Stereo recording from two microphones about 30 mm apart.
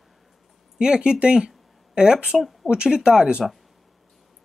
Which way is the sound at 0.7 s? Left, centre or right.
Right.